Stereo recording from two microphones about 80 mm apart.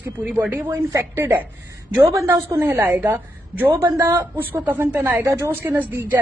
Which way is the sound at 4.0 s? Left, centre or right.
Right.